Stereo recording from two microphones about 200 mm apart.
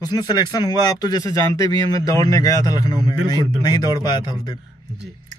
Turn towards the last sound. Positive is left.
turn(degrees=20)  # may be behind; listen again after turning